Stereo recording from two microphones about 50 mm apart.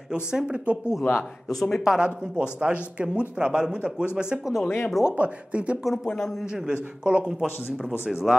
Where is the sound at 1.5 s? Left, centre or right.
Centre.